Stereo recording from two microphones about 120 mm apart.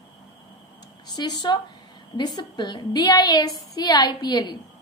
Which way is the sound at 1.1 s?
35° left (ahead or behind).